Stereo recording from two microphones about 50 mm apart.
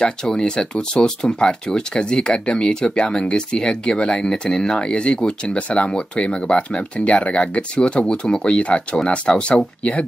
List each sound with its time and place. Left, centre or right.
0.0 s speech: centre